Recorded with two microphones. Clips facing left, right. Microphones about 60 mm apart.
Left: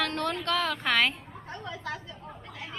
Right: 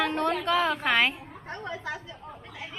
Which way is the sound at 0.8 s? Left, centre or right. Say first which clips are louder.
Right 2 dB; centre.